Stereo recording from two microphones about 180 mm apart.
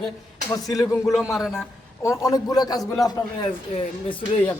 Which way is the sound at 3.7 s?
35° left (ahead or behind).